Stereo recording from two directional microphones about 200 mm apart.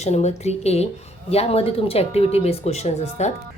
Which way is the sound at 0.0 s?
35° left (ahead or behind).